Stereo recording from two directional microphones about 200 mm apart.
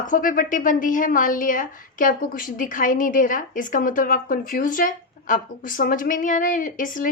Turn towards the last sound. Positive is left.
turn(degrees=40)  # may be behind; listen again after turning